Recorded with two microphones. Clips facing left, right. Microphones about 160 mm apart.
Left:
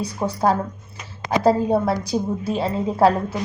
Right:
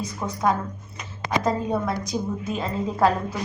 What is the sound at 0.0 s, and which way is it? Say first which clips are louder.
A woman's voice: left 4 dB; 35° left (ahead or behind).